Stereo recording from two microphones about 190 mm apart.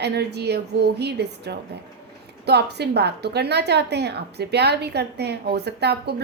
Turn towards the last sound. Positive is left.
turn(degrees=-60)  # may be behind; listen again after turning